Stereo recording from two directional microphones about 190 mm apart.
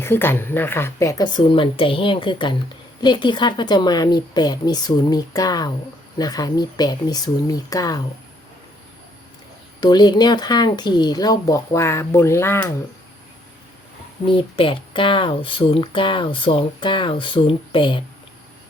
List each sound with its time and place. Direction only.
0.0 s speech: 10° left (ahead or behind)
9.8 s speech: 20° left (ahead or behind)
14.3 s speech: 25° left (ahead or behind)